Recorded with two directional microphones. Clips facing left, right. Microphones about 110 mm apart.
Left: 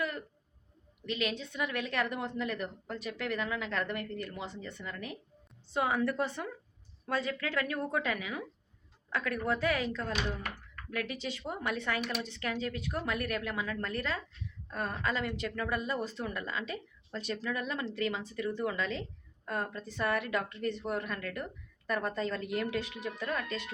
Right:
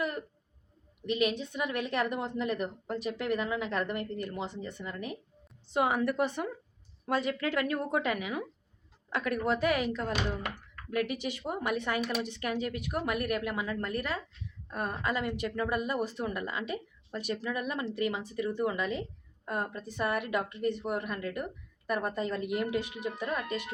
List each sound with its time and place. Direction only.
1.1 s a woman's voice: 20° right (ahead or behind)